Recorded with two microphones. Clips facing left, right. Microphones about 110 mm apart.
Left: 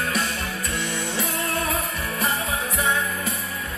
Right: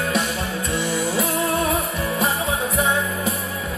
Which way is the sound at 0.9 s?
10° right (ahead or behind).